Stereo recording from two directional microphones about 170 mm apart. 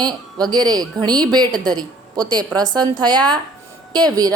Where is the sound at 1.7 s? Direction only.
25° right (ahead or behind).